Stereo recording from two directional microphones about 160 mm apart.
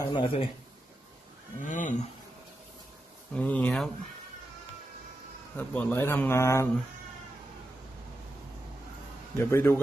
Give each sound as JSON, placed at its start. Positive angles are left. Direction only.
{"t": 0.0, "sound": "a man's voice", "side_deg": 30}
{"t": 1.6, "sound": "speech", "side_deg": 55}
{"t": 3.3, "sound": "a man's voice", "side_deg": 10}
{"t": 5.6, "sound": "a man's voice", "side_deg": 10}
{"t": 9.4, "sound": "a man's voice", "side_deg": 15}